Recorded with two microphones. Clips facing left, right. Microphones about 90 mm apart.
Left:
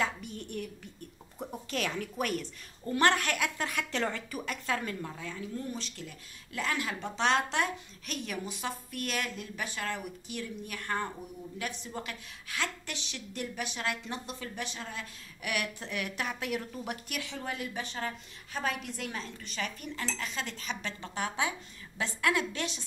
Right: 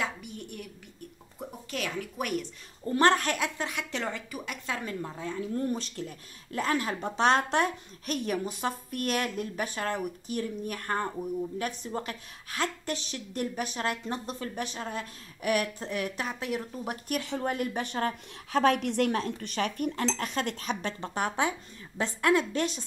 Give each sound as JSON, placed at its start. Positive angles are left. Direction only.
{"t": 0.0, "sound": "a sound", "side_deg": -10}
{"t": 1.4, "sound": "a woman's voice", "side_deg": -5}
{"t": 2.9, "sound": "speech", "side_deg": -30}
{"t": 5.3, "sound": "speech", "side_deg": -45}